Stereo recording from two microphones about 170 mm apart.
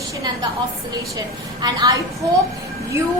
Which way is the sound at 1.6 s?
20° right (ahead or behind).